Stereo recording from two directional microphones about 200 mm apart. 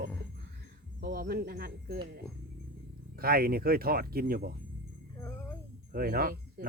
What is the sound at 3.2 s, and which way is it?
Speech, 50° right (ahead or behind).